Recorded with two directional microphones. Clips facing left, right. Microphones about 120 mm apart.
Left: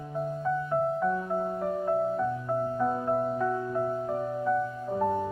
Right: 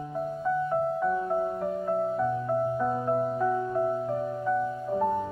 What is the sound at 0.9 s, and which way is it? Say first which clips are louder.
Music: right 2 dB; 5° right (ahead or behind).